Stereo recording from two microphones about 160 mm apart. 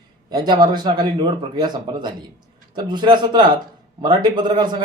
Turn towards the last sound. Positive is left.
turn(degrees=-30)  # may be behind; listen again after turning